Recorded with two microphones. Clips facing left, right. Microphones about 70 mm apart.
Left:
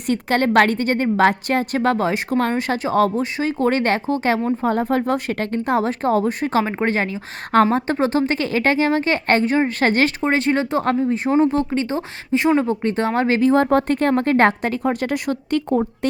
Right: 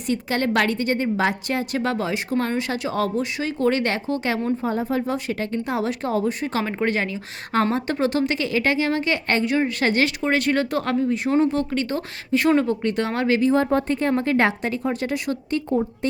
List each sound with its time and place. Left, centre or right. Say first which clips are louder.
0.1 s a woman's voice: left 5 dB; left
4.6 s speech: left 4 dB; left
6.6 s a woman's voice: left 3 dB; left
10.2 s speech: left 2 dB; left